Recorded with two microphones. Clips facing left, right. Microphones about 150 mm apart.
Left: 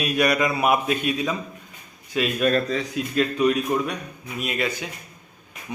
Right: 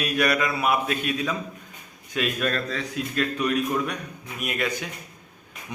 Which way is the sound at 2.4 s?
10° left (ahead or behind).